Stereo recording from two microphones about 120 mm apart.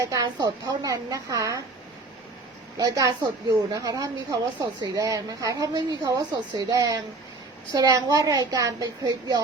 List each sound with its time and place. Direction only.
0.0 s a woman's voice: 30° right (ahead or behind)
2.7 s a woman's voice: 30° right (ahead or behind)